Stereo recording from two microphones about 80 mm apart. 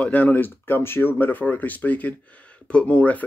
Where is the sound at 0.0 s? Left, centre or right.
Centre.